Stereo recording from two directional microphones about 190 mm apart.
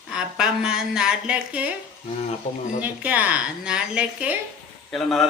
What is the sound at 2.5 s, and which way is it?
Speech, 35° left (ahead or behind).